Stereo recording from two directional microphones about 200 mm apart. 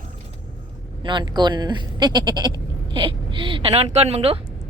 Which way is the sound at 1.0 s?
20° right (ahead or behind).